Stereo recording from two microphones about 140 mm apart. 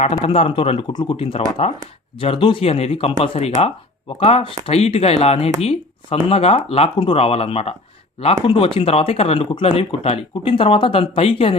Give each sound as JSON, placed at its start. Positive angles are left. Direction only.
{"t": 0.0, "sound": "speech", "side_deg": 45}